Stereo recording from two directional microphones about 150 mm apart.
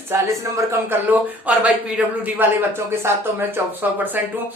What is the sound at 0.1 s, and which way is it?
Speech, 15° right (ahead or behind).